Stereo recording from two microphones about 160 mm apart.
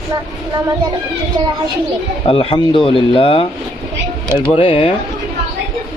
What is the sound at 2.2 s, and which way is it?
Speech, 35° left (ahead or behind).